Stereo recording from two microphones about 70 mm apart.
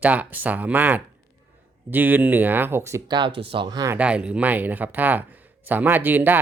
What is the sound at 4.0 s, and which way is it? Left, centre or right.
Speech, centre.